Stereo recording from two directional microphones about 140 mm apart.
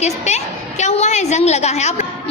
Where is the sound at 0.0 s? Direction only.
55° left (ahead or behind).